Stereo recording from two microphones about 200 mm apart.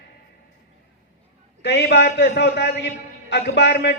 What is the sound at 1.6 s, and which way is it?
A man's voice, 60° left (ahead or behind).